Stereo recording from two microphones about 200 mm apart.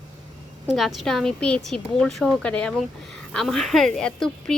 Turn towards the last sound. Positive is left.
turn(degrees=0)  # may be behind; listen again after turning